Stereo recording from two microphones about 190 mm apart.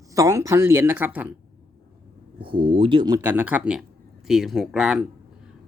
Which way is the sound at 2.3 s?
25° right (ahead or behind).